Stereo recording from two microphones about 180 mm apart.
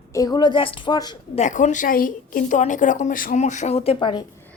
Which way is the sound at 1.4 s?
40° left (ahead or behind).